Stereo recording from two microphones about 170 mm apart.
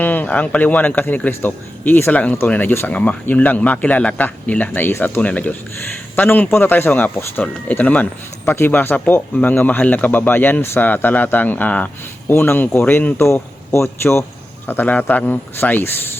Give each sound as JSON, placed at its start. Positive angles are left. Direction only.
{"t": 0.0, "sound": "speech", "side_deg": 10}